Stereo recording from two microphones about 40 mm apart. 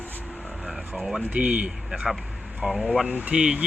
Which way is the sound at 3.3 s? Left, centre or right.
Right.